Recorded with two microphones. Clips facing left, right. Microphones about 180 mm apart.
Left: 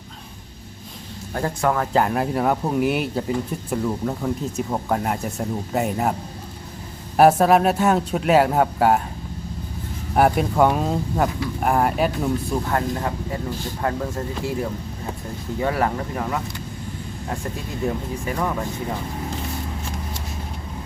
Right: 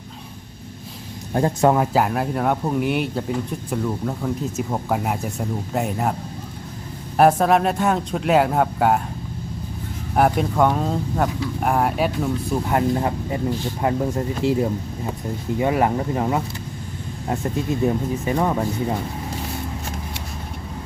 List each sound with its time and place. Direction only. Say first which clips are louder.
1.3 s speech: right 5 dB; 20° right (ahead or behind)
1.9 s speech: even; 5° right (ahead or behind)
7.2 s speech: left 1 dB; 5° left (ahead or behind)
10.2 s speech: left 1 dB; 5° left (ahead or behind)
12.6 s speech: right 3 dB; 20° right (ahead or behind)
17.8 s speech: right 1 dB; 25° right (ahead or behind)